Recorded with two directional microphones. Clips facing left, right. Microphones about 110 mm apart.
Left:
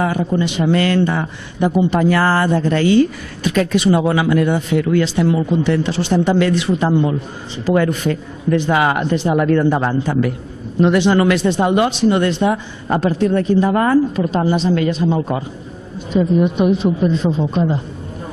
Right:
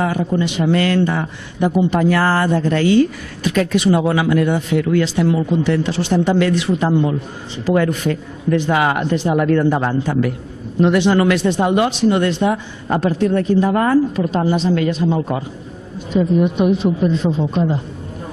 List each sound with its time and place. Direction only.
0.0 s a man's voice: 25° left (ahead or behind)